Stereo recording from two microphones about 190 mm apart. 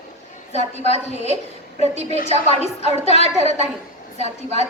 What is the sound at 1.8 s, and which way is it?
A woman's voice, 35° right (ahead or behind).